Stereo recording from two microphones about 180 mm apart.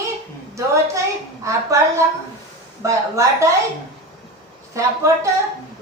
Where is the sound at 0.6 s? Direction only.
15° right (ahead or behind).